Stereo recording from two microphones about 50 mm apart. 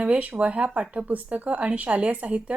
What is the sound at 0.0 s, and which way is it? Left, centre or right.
A woman's voice, right.